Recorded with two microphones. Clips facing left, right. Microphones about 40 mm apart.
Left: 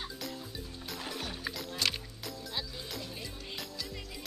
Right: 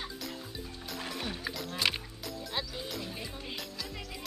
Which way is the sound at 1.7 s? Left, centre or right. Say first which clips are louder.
Right 3 dB; centre.